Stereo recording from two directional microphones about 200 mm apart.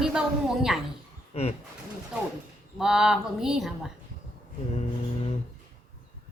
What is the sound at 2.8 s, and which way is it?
Speech, 5° right (ahead or behind).